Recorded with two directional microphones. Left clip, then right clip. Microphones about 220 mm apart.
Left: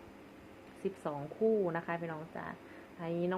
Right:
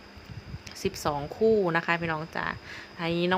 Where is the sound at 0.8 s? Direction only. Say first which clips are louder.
Right 9 dB; 30° right (ahead or behind).